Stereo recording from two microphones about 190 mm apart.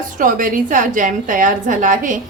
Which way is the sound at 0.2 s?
45° right (ahead or behind).